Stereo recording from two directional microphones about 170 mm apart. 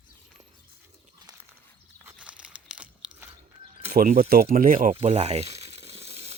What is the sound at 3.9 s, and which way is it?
Speech, 60° right (ahead or behind).